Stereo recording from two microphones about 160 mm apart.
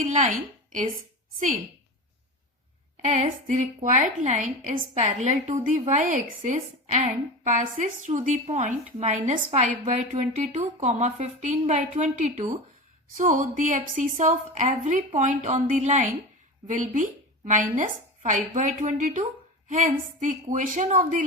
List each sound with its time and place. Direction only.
0.0 s speech: 50° right (ahead or behind)
3.1 s a woman's voice: 50° right (ahead or behind)